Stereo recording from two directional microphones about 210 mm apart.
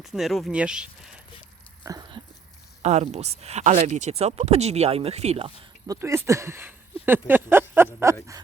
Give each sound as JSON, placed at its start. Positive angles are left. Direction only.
{"t": 0.0, "sound": "speech", "side_deg": 0}
{"t": 1.8, "sound": "a sound", "side_deg": -15}
{"t": 2.8, "sound": "speech", "side_deg": -30}
{"t": 5.9, "sound": "speech", "side_deg": -15}